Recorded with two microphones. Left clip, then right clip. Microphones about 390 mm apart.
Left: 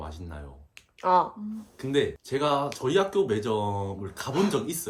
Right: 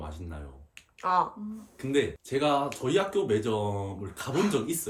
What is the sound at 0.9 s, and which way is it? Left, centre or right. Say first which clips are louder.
Speech: left 4 dB; left.